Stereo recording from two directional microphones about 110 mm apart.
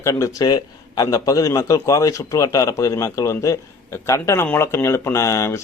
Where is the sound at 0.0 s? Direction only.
30° left (ahead or behind).